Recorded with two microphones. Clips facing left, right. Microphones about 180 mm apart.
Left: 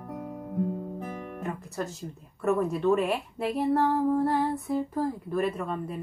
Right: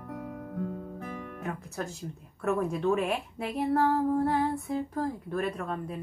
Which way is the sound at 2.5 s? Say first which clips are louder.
Left 3 dB; centre (ahead or behind).